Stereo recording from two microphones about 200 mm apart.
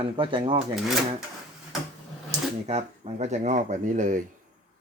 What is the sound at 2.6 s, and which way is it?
Speech, 30° right (ahead or behind).